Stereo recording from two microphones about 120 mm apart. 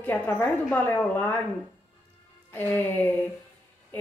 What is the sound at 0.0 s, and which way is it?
Speech, 10° left (ahead or behind).